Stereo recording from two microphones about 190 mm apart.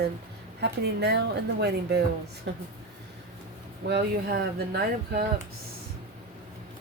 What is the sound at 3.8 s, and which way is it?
Speech, 60° right (ahead or behind).